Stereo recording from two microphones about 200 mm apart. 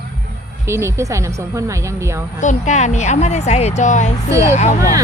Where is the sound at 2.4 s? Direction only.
40° left (ahead or behind).